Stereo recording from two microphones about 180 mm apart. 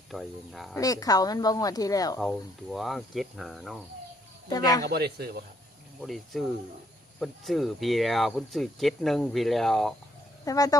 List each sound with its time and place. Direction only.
0.1 s speech: centre (ahead or behind)
0.8 s speech: 20° left (ahead or behind)
2.1 s speech: centre (ahead or behind)
4.4 s speech: 20° left (ahead or behind)
4.8 s speech: 65° right (ahead or behind)
6.0 s speech: centre (ahead or behind)
10.4 s speech: 20° left (ahead or behind)